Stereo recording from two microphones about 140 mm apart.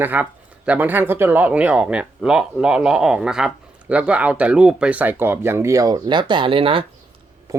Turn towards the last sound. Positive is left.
turn(degrees=-25)  # may be behind; listen again after turning